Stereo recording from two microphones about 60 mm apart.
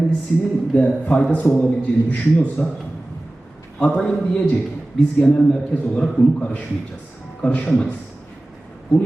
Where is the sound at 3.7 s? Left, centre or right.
Centre.